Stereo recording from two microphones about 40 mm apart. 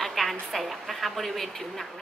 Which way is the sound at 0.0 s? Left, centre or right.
Centre.